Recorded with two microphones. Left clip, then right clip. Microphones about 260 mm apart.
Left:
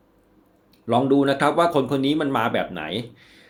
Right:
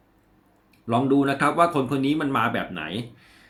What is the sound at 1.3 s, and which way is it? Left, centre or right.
Speech, centre.